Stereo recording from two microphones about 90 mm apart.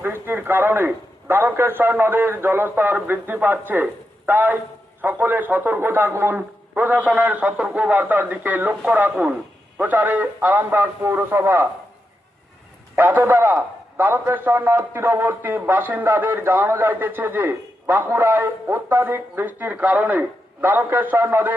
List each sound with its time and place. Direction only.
0.0 s a man's voice: 25° right (ahead or behind)
13.0 s a man's voice: 20° right (ahead or behind)